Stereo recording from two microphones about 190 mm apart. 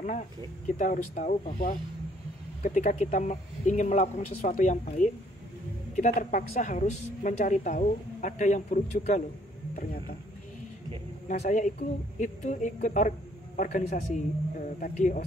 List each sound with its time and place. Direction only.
0.7 s a woman's voice: 40° left (ahead or behind)
11.2 s a woman's voice: 40° left (ahead or behind)